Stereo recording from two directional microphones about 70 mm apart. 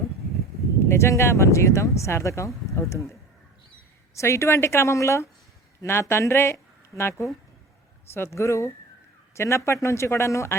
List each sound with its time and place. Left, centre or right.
0.8 s speech: left